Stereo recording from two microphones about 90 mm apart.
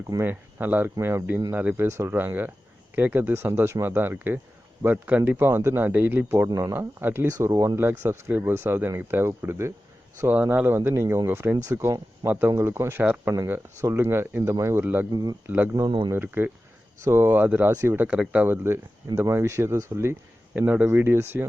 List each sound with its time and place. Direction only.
0.2 s speech: 20° right (ahead or behind)
10.3 s speech: 20° right (ahead or behind)
11.6 s speech: 35° right (ahead or behind)
13.0 s speech: 15° right (ahead or behind)
13.8 s speech: 30° right (ahead or behind)
15.1 s speech: 50° right (ahead or behind)
15.4 s speech: 20° right (ahead or behind)
18.4 s speech: 25° right (ahead or behind)
20.6 s speech: 20° right (ahead or behind)